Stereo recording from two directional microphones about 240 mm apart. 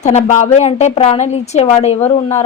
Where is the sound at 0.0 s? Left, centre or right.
Left.